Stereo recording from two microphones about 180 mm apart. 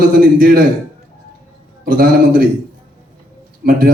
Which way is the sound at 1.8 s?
55° right (ahead or behind).